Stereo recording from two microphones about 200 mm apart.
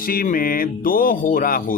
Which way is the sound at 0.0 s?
45° left (ahead or behind).